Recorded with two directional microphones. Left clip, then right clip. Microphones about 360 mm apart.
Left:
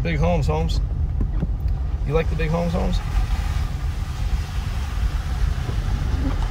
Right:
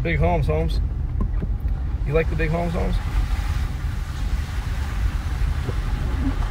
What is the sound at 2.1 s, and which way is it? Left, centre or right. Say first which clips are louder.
Speech: right 1 dB; left.